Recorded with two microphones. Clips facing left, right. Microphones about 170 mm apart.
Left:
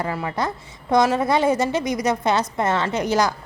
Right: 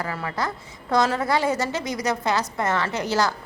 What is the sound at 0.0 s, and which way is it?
A woman's voice, 20° left (ahead or behind).